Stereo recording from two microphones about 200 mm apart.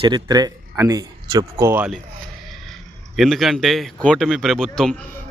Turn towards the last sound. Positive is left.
turn(degrees=0)  # may be behind; listen again after turning